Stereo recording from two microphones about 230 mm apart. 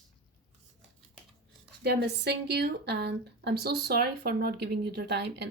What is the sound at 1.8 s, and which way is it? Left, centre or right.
Speech, right.